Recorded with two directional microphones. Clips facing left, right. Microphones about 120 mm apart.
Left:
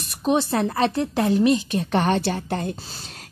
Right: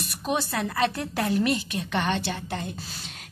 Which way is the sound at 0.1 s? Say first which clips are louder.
Left 7 dB; 25° left (ahead or behind).